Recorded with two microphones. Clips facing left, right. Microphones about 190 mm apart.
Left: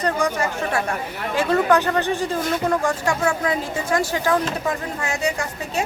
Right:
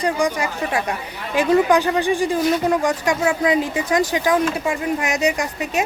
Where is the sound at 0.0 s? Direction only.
15° right (ahead or behind).